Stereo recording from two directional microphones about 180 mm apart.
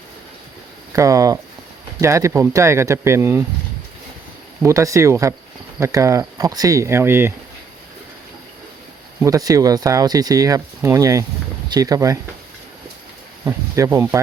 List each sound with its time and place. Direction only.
0.9 s speech: 20° right (ahead or behind)
4.6 s speech: 15° right (ahead or behind)
9.2 s speech: 20° right (ahead or behind)
13.4 s speech: 15° right (ahead or behind)